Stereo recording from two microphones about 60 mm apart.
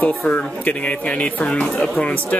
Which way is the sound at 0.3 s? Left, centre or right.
Left.